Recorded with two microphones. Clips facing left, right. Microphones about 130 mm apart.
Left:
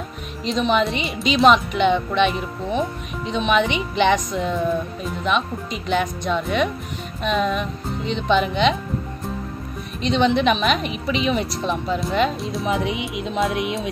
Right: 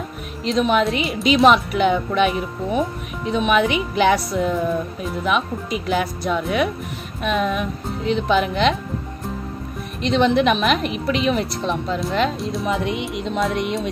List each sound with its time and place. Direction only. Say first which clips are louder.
0.4 s speech: right 2 dB; centre (ahead or behind)
10.0 s speech: right 1 dB; centre (ahead or behind)